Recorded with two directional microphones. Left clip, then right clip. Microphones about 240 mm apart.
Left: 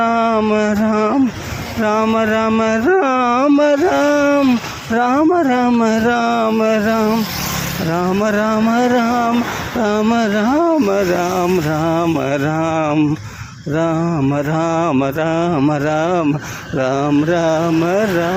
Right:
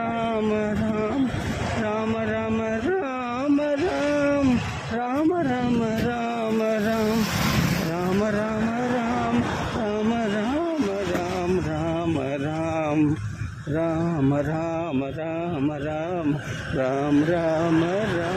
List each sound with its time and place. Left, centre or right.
0.0 s a sound: left
4.9 s speech: left
7.9 s mantra: centre
9.8 s a sound: left
13.7 s mantra: centre
16.7 s speech: centre